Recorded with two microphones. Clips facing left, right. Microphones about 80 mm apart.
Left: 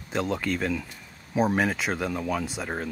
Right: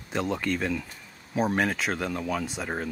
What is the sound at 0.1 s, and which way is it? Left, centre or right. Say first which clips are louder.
Speech: left 1 dB; centre.